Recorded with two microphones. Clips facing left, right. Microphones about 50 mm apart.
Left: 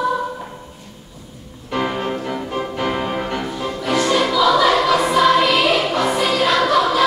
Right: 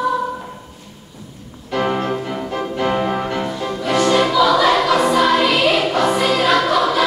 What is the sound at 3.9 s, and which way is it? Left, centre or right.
Music, right.